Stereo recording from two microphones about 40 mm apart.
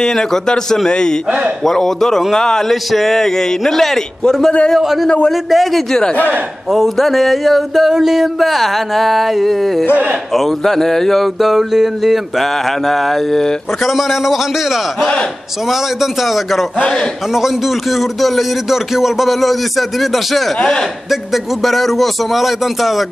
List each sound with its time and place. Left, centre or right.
0.0 s a man's voice: centre
1.6 s a man's voice: centre
2.7 s a man's voice: centre
4.7 s speech: centre
13.8 s speech: centre